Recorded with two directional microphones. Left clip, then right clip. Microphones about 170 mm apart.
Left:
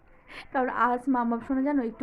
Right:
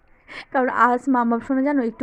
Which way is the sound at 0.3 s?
35° right (ahead or behind).